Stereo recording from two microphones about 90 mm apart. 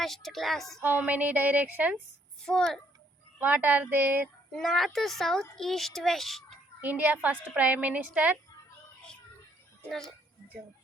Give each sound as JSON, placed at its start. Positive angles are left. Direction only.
{"t": 0.0, "sound": "a child's voice", "side_deg": 5}
{"t": 0.8, "sound": "a woman's voice", "side_deg": -20}
{"t": 2.4, "sound": "a child's voice", "side_deg": 5}
{"t": 3.4, "sound": "speech", "side_deg": -20}
{"t": 4.5, "sound": "a child's voice", "side_deg": 0}
{"t": 6.8, "sound": "a woman's voice", "side_deg": -20}